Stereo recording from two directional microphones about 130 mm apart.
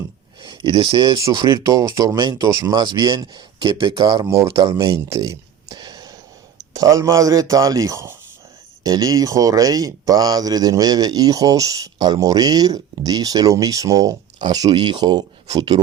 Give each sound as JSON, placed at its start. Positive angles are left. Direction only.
{"t": 0.4, "sound": "speech", "side_deg": -40}
{"t": 4.7, "sound": "a sound", "side_deg": -25}
{"t": 6.6, "sound": "speech", "side_deg": -25}